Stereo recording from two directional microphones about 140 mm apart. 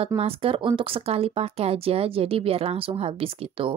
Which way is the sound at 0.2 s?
40° right (ahead or behind).